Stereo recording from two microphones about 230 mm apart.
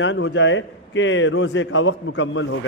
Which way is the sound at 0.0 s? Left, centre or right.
Left.